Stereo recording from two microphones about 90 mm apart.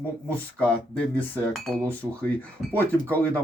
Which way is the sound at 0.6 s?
10° left (ahead or behind).